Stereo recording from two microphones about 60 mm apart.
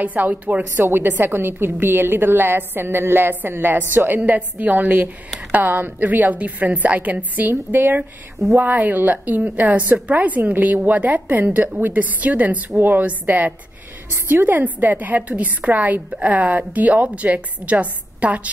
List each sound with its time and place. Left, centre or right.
0.0 s a woman's voice: right